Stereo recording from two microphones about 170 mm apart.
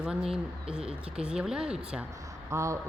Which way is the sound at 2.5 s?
15° right (ahead or behind).